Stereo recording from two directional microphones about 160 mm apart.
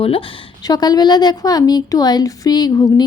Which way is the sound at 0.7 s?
25° left (ahead or behind).